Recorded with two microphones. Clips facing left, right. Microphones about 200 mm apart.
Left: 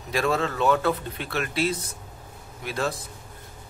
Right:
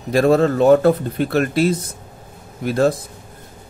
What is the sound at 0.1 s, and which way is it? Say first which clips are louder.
Speech: right 11 dB; 45° right (ahead or behind).